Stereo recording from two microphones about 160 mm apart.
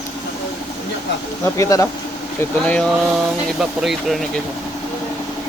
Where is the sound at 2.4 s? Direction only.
10° left (ahead or behind).